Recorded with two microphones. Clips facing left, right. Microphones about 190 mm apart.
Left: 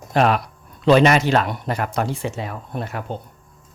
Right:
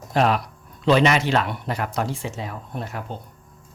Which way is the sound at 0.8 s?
45° left (ahead or behind).